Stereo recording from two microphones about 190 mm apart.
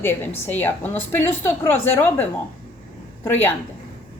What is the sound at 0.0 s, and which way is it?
Speech, 10° left (ahead or behind).